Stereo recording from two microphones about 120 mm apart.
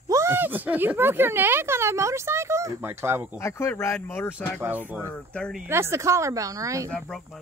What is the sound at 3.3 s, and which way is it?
Speech, 20° left (ahead or behind).